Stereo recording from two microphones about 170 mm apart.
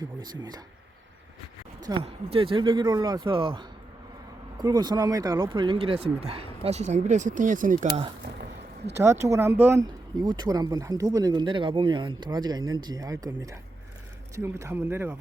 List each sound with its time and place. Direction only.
0.0 s speech: 25° right (ahead or behind)
1.9 s speech: 30° right (ahead or behind); by 8.0 s 45° right (ahead or behind)
9.0 s speech: 15° right (ahead or behind)